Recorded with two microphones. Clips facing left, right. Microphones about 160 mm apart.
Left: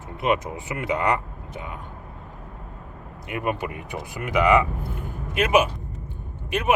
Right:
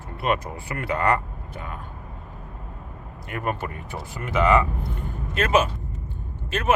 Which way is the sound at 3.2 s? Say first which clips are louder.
Left 2 dB; 15° left (ahead or behind).